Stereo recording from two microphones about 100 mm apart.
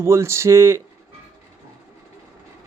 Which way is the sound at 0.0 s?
25° right (ahead or behind).